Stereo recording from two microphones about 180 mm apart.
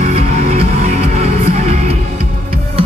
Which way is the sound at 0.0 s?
35° right (ahead or behind).